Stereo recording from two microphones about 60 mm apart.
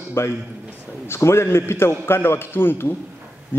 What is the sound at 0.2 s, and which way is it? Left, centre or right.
A man's voice, left.